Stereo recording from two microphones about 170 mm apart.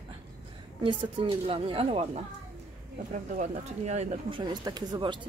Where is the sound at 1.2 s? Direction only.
30° right (ahead or behind).